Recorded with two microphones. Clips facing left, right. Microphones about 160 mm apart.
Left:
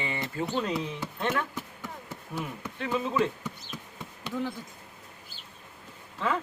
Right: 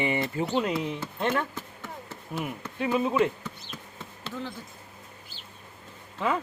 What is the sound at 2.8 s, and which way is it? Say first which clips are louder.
Speech: right 3 dB; 15° right (ahead or behind).